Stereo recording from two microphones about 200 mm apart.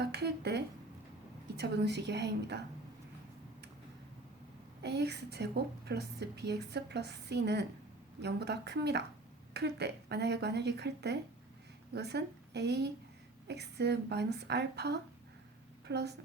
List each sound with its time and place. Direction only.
0.0 s a woman's voice: 55° right (ahead or behind)
4.8 s a woman's voice: 55° right (ahead or behind)